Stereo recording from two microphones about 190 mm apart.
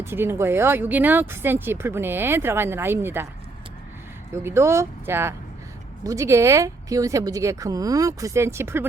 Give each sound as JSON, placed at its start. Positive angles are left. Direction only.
{"t": 0.0, "sound": "speech", "side_deg": -10}
{"t": 4.4, "sound": "speech", "side_deg": -15}